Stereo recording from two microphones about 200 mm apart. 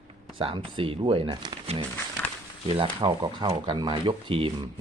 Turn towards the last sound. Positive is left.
turn(degrees=-25)  # may be behind; listen again after turning